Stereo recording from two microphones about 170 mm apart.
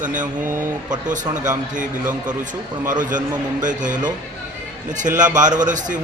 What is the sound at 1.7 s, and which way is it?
A man's voice, 50° right (ahead or behind).